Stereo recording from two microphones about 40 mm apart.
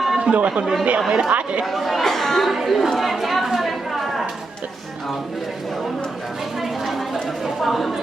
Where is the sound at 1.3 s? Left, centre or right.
Right.